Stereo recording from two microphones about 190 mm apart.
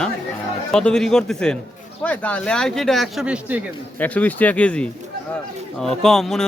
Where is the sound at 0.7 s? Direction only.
5° left (ahead or behind).